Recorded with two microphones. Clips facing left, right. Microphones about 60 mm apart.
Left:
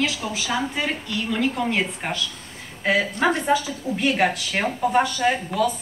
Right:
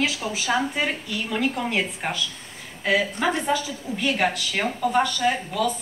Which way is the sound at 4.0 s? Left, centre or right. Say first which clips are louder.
Left 2 dB; left.